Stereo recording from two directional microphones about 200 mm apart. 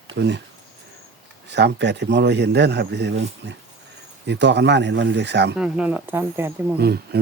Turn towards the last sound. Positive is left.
turn(degrees=-55)  # may be behind; listen again after turning